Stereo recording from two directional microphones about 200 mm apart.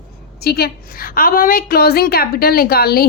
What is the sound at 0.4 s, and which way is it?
A woman's voice, 50° left (ahead or behind).